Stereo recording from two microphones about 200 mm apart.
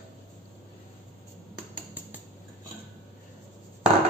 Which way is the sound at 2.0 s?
10° right (ahead or behind).